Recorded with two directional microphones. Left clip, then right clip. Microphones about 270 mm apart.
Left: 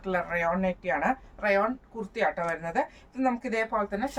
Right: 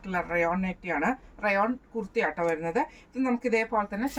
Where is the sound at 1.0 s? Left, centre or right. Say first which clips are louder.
Even; centre.